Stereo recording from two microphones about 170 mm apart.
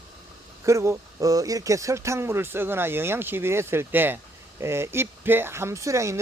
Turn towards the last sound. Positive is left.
turn(degrees=-15)  # may be behind; listen again after turning